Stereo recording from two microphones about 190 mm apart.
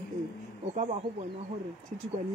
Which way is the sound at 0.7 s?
40° right (ahead or behind).